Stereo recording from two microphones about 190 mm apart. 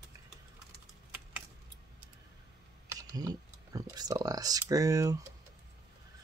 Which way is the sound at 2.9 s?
20° right (ahead or behind).